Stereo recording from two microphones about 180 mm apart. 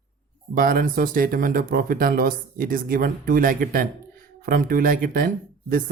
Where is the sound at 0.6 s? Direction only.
50° right (ahead or behind).